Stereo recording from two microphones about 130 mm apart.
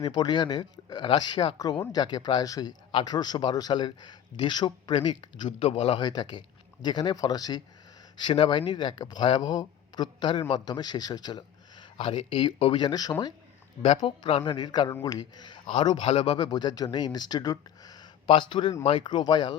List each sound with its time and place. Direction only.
0.0 s speech: 35° left (ahead or behind)
6.1 s speech: 35° left (ahead or behind)
13.8 s speech: 50° left (ahead or behind)